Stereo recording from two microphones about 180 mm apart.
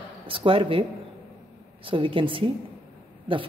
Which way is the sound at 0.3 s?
30° right (ahead or behind).